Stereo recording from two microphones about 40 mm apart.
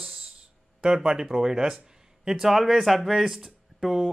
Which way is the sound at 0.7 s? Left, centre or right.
Centre.